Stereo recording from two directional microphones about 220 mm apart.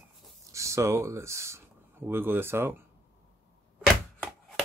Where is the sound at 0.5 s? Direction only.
15° right (ahead or behind).